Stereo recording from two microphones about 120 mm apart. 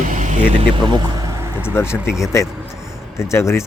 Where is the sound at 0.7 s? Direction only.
35° right (ahead or behind).